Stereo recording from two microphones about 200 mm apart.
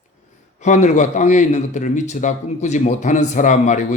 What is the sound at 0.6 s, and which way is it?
A man's voice, 35° left (ahead or behind).